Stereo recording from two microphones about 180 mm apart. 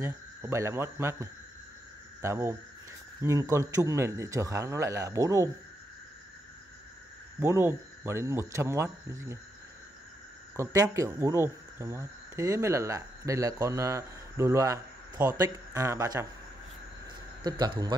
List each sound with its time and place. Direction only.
0.0 s speech: 15° right (ahead or behind)
7.3 s speech: 10° right (ahead or behind)
10.5 s speech: 15° right (ahead or behind)
17.4 s speech: 25° right (ahead or behind)